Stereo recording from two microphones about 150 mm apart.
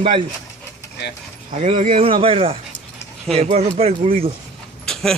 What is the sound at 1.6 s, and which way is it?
Speech, 40° right (ahead or behind).